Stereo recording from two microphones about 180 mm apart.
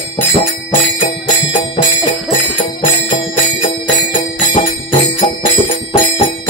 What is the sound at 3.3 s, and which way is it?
Music, 30° left (ahead or behind).